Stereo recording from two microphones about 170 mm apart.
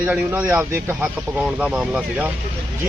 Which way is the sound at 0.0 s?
10° right (ahead or behind).